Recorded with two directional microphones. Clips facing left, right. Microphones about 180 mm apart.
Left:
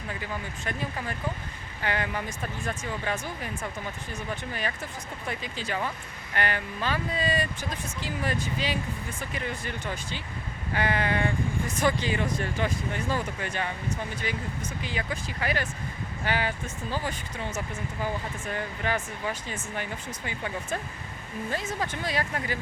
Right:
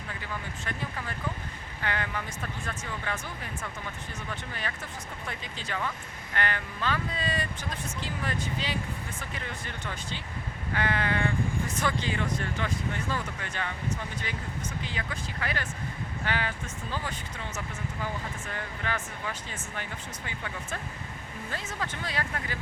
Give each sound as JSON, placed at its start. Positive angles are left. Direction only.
{"t": 1.8, "sound": "speech", "side_deg": 15}
{"t": 5.3, "sound": "speech", "side_deg": 10}
{"t": 14.8, "sound": "speech", "side_deg": 10}
{"t": 18.8, "sound": "speech", "side_deg": 15}